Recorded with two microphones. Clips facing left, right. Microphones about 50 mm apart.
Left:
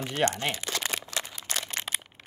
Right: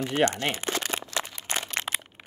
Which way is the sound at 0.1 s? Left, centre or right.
Right.